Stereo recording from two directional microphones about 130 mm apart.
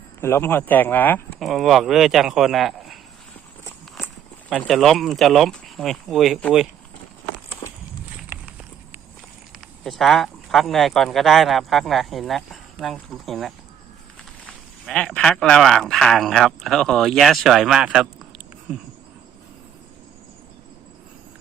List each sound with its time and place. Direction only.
0.2 s speech: 20° left (ahead or behind)
1.4 s speech: centre (ahead or behind)
4.6 s speech: centre (ahead or behind)
7.6 s walk: 45° left (ahead or behind)
9.8 s speech: centre (ahead or behind)